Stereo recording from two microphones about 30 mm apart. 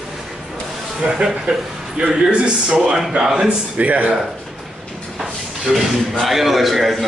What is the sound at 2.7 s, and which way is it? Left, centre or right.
Speech, centre.